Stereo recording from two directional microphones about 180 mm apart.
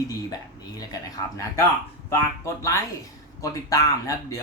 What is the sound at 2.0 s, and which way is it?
Speech, 15° left (ahead or behind).